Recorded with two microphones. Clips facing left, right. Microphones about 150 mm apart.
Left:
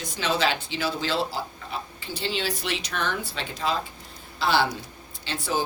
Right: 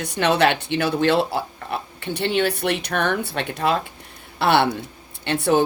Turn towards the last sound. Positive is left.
turn(degrees=-65)  # may be behind; listen again after turning